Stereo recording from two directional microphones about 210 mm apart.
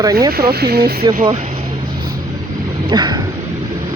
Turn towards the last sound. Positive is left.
turn(degrees=-20)  # may be behind; listen again after turning